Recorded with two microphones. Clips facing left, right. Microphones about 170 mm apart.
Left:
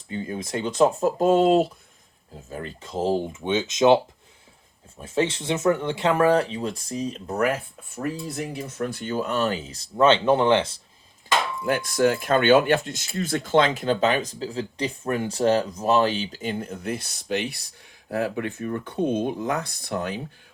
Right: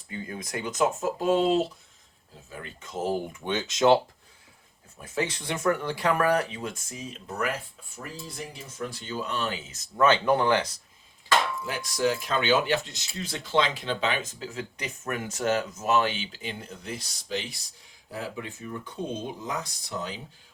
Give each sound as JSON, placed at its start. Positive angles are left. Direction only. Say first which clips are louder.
{"t": 0.1, "sound": "speech", "louder": "left 6 dB", "side_deg": 25}
{"t": 2.5, "sound": "speech", "louder": "left 6 dB", "side_deg": 35}
{"t": 7.9, "sound": "speech", "louder": "left 10 dB", "side_deg": 60}
{"t": 11.6, "sound": "speech", "louder": "left 6 dB", "side_deg": 55}